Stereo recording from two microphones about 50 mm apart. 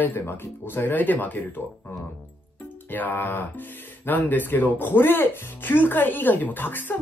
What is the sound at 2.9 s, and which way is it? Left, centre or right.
Speech, left.